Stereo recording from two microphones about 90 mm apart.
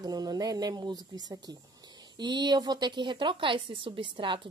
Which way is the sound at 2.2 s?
55° right (ahead or behind).